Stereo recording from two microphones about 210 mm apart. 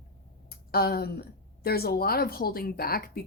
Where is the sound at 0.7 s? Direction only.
45° left (ahead or behind).